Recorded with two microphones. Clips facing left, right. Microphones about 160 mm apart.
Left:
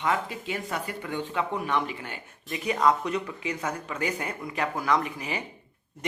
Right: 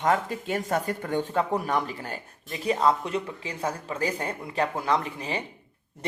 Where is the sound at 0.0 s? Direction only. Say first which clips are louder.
Right 3 dB; 45° right (ahead or behind).